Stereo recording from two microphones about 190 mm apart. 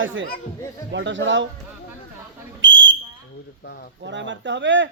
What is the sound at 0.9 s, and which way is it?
Speech, 75° right (ahead or behind).